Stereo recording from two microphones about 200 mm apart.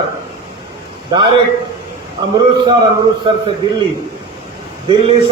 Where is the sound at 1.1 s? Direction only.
25° right (ahead or behind).